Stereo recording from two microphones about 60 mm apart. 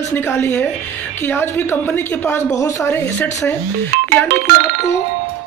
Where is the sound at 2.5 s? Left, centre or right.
Left.